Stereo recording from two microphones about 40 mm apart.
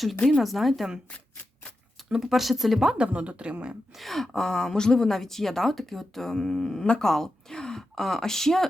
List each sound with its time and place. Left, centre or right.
0.3 s speech: centre
2.1 s speech: centre
3.1 s speech: right
3.9 s speech: centre